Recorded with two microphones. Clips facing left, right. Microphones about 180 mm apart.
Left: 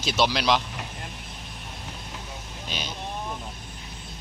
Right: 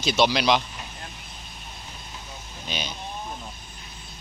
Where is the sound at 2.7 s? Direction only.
Centre (ahead or behind).